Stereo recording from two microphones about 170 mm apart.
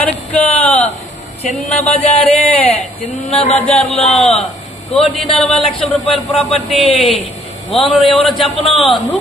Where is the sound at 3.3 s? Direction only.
5° left (ahead or behind).